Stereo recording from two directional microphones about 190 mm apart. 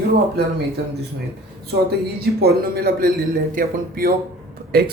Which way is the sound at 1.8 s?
55° right (ahead or behind).